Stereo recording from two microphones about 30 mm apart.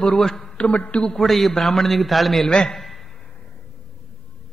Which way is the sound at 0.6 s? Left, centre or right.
Left.